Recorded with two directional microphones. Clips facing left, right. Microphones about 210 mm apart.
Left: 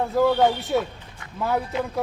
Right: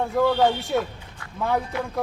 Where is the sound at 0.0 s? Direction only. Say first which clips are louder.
Left 1 dB; centre (ahead or behind).